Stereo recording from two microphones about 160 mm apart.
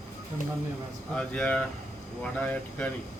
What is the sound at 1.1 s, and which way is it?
Speech, 5° left (ahead or behind).